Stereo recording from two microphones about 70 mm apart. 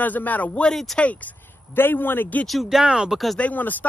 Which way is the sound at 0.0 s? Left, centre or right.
Left.